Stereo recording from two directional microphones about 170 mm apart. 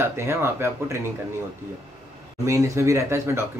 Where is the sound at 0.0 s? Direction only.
15° right (ahead or behind).